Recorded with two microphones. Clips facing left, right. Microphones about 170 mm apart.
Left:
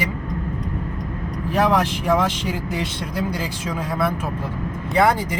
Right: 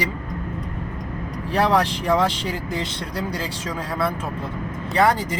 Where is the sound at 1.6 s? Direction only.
10° left (ahead or behind).